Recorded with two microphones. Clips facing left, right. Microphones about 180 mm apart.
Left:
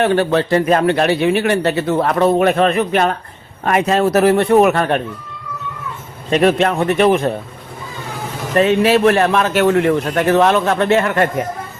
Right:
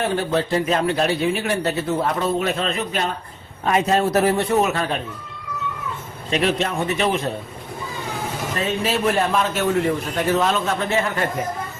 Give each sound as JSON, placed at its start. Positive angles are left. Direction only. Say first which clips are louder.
{"t": 0.0, "sound": "a man's voice", "louder": "left 7 dB", "side_deg": 70}
{"t": 3.7, "sound": "a man's voice", "louder": "left 4 dB", "side_deg": 80}
{"t": 6.3, "sound": "a man's voice", "louder": "left 7 dB", "side_deg": 50}
{"t": 8.5, "sound": "a man's voice", "louder": "left 11 dB", "side_deg": 65}